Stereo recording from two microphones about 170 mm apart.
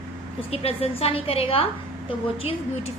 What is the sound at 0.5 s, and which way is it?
A woman's voice, 35° left (ahead or behind).